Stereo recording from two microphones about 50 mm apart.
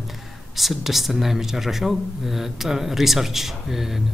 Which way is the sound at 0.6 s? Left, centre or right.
Centre.